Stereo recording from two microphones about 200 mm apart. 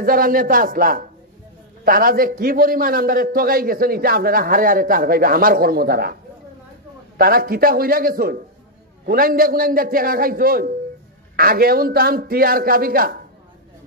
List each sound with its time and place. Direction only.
0.0 s a man's voice: 45° right (ahead or behind)
7.2 s a man's voice: 50° right (ahead or behind)